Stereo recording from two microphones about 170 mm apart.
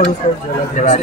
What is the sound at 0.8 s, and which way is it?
Speech, 50° left (ahead or behind).